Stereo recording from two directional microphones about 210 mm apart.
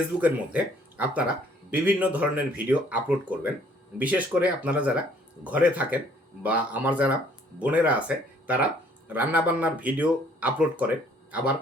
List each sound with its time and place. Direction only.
0.2 s speech: 5° right (ahead or behind)